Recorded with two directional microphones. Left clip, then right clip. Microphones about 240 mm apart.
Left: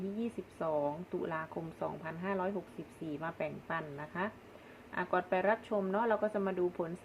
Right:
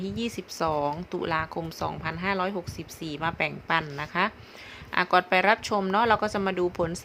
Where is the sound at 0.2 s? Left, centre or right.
Right.